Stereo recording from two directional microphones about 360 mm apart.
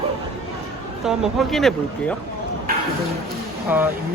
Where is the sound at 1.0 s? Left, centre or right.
Centre.